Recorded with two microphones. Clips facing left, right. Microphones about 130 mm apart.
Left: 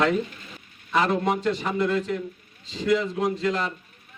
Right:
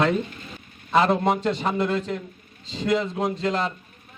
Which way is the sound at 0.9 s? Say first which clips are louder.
Right 3 dB; 25° right (ahead or behind).